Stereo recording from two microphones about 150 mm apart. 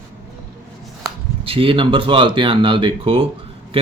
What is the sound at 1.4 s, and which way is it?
Speech, 35° right (ahead or behind).